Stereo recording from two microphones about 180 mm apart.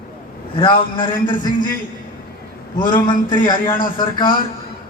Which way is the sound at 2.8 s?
25° left (ahead or behind).